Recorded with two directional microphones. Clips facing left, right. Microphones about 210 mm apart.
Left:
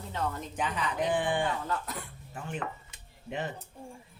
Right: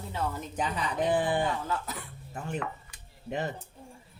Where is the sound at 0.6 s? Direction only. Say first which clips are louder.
Right 1 dB; 35° right (ahead or behind).